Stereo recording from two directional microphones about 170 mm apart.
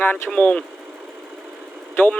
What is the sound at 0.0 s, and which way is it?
Speech, 10° left (ahead or behind).